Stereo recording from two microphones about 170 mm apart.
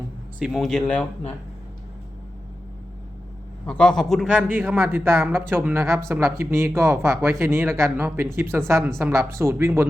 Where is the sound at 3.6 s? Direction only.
5° left (ahead or behind); by 9.9 s 15° right (ahead or behind).